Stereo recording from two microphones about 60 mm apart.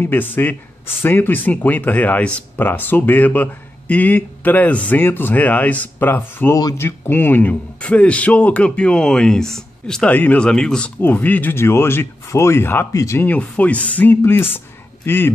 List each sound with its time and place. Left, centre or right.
0.0 s speech: left
2.5 s speech: left
5.0 s speech: left
6.0 s speech: left
7.8 s speech: left
10.0 s speech: left
10.4 s speech: centre
11.0 s speech: left
11.5 s speech: left
12.9 s speech: left
13.4 s speech: left